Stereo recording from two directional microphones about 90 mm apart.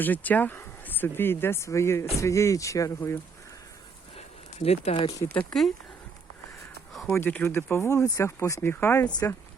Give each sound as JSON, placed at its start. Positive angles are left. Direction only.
{"t": 0.0, "sound": "speech", "side_deg": 20}
{"t": 4.6, "sound": "speech", "side_deg": 90}
{"t": 5.5, "sound": "speech", "side_deg": 5}
{"t": 7.1, "sound": "speech", "side_deg": 20}